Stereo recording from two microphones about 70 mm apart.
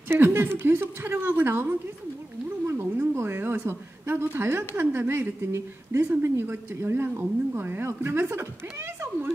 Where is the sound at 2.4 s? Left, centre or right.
Right.